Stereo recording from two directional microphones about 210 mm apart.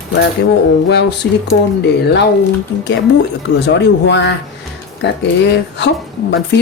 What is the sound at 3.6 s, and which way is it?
Speech, 55° left (ahead or behind).